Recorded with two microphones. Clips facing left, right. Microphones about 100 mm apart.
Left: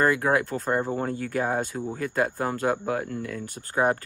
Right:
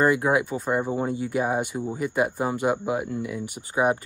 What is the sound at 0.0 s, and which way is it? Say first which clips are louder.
Speech: right 1 dB; 20° right (ahead or behind).